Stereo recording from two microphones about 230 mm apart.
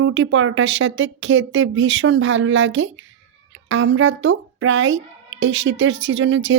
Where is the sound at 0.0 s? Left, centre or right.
Right.